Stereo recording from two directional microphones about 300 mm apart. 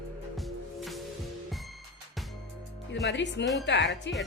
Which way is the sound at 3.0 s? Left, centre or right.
Left.